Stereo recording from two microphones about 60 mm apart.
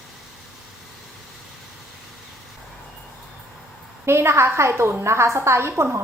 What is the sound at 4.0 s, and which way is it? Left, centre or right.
A woman's voice, right.